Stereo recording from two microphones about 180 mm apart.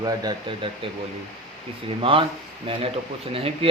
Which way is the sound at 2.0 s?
30° right (ahead or behind).